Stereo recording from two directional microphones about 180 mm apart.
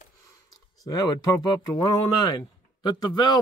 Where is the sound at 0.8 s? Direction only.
20° left (ahead or behind).